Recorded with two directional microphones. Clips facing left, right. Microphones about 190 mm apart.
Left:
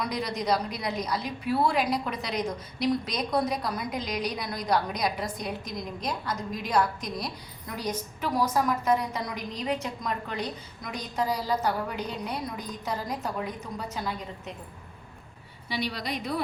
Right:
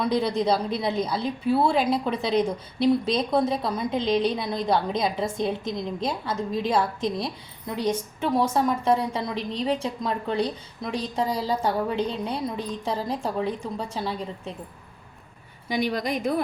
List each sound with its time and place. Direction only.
0.0 s a woman's voice: 30° right (ahead or behind)
15.7 s a woman's voice: 50° right (ahead or behind)